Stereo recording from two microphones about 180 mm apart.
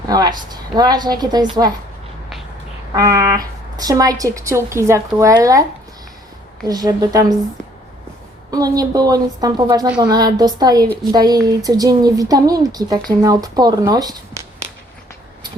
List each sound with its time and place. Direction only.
0.1 s a woman's voice: 20° right (ahead or behind)
2.9 s speech: 20° right (ahead or behind)
6.7 s speech: 20° right (ahead or behind)
8.4 s speech: 20° right (ahead or behind)